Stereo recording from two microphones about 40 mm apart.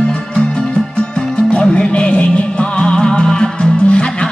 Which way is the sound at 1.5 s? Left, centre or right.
Left.